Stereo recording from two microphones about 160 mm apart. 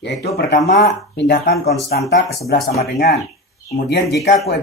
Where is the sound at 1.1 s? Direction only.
90° left.